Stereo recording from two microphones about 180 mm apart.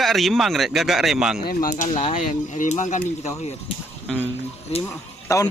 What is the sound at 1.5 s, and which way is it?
Speech, 50° left (ahead or behind).